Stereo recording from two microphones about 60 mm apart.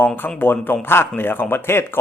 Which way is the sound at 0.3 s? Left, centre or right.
Left.